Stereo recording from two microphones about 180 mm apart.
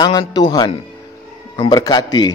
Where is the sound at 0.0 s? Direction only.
25° left (ahead or behind).